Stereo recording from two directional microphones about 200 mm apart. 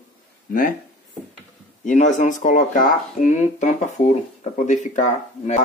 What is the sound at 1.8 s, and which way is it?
Speech, 40° left (ahead or behind).